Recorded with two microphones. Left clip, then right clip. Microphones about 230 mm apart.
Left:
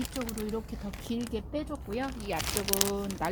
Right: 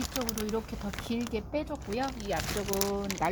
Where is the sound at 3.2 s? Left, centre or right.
Centre.